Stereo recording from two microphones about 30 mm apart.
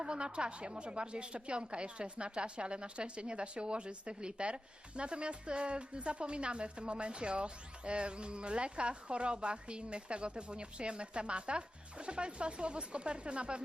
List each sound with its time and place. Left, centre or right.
0.0 s a woman's voice: right